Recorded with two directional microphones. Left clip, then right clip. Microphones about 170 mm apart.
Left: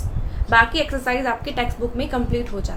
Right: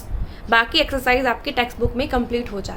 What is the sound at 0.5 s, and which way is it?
A woman's voice, 30° right (ahead or behind).